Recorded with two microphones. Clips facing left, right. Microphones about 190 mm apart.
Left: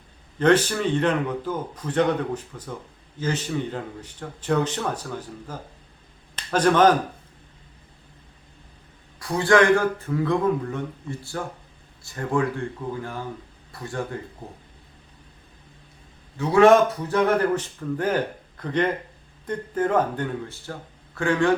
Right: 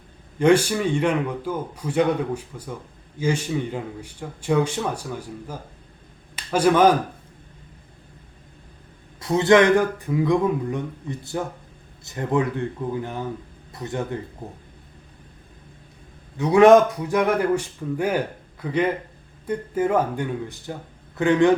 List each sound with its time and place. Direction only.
0.3 s a man's voice: 10° right (ahead or behind)
9.1 s speech: 25° right (ahead or behind)
16.4 s a man's voice: 15° right (ahead or behind)